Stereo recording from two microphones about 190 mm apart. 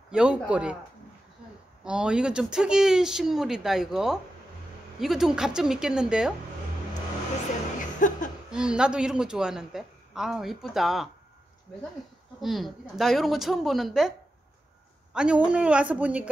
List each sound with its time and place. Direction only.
0.1 s a woman's voice: 5° right (ahead or behind)
1.9 s a woman's voice: 5° right (ahead or behind)
8.0 s a sound: 45° left (ahead or behind)
8.5 s a woman's voice: 5° right (ahead or behind)
12.4 s a woman's voice: centre (ahead or behind)
15.1 s a woman's voice: 5° right (ahead or behind)